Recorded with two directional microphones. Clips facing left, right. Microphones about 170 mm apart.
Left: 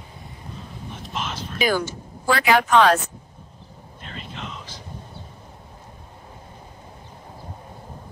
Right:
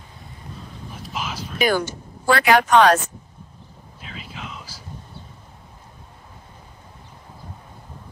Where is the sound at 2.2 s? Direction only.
60° right (ahead or behind).